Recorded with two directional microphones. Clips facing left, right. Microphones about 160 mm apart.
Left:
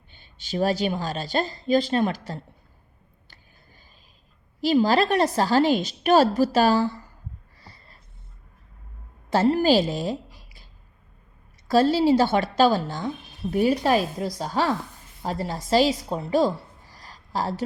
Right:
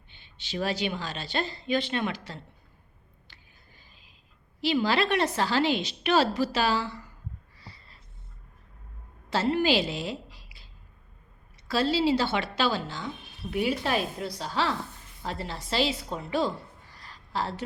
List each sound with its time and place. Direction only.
0.1 s a woman's voice: 45° left (ahead or behind)
4.6 s a woman's voice: 40° left (ahead or behind)
7.6 s a sound: 45° left (ahead or behind)
9.3 s a woman's voice: 45° left (ahead or behind)
11.7 s a woman's voice: 45° left (ahead or behind)